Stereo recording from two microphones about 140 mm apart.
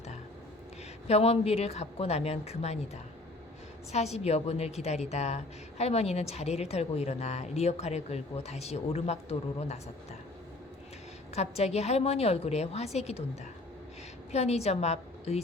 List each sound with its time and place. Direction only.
1.0 s a woman's voice: 50° left (ahead or behind)
11.3 s a woman's voice: 50° left (ahead or behind)
14.3 s a woman's voice: 50° left (ahead or behind)